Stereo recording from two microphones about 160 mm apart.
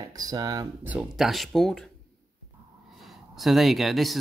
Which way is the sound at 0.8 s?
5° right (ahead or behind).